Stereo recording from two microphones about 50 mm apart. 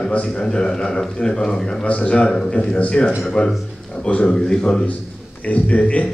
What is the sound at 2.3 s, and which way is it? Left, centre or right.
A man's voice, centre.